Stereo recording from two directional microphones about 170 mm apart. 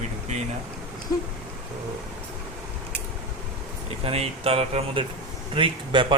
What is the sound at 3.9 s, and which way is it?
Speech, 35° right (ahead or behind).